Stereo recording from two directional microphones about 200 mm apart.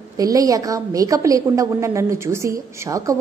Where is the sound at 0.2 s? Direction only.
15° right (ahead or behind).